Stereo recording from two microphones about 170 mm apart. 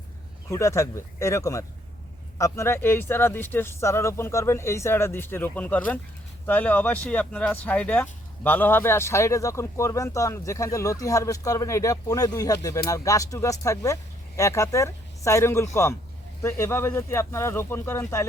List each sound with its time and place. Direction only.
0.4 s speech: 15° left (ahead or behind)